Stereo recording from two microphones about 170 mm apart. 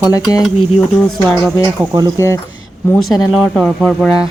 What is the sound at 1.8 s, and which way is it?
Speech, 5° right (ahead or behind).